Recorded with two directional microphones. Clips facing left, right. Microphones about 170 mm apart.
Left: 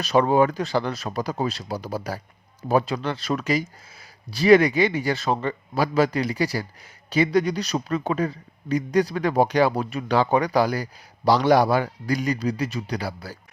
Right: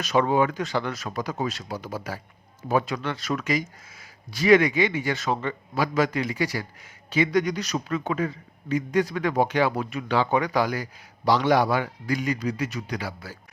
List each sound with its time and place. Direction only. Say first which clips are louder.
0.0 s a man's voice: left 3 dB; 35° left (ahead or behind)